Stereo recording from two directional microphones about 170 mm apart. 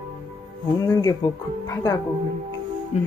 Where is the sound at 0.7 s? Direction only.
20° left (ahead or behind).